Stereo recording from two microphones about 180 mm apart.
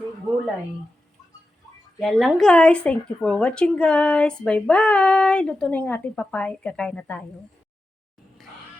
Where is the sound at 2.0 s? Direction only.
Centre (ahead or behind).